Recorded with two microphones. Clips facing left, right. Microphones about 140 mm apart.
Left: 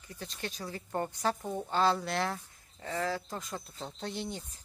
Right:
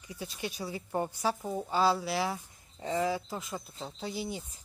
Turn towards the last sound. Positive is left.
turn(degrees=-10)  # may be behind; listen again after turning